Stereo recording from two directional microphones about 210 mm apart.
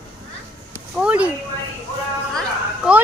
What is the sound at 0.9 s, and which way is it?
Speech, 5° right (ahead or behind).